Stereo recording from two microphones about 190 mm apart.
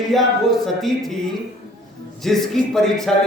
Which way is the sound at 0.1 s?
Centre (ahead or behind).